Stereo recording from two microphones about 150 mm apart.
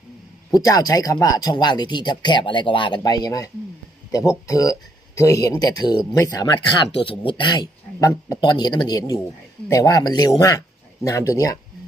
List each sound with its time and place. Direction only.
0.5 s speech: 25° left (ahead or behind)